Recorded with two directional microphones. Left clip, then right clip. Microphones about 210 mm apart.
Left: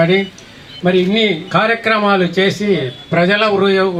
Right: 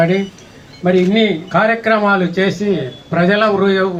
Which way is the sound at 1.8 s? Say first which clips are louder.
Even; 45° left (ahead or behind).